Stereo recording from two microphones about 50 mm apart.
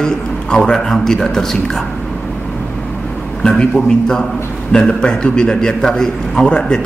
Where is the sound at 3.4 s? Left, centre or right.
Centre.